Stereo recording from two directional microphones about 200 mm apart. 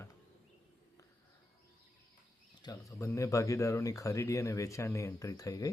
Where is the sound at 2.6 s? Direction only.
20° left (ahead or behind).